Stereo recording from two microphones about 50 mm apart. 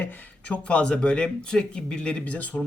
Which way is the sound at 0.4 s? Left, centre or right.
Left.